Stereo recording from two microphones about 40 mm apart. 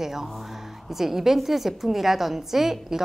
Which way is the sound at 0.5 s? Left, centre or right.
Centre.